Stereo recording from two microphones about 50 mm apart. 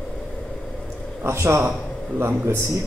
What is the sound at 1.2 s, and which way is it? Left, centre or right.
A man's voice, right.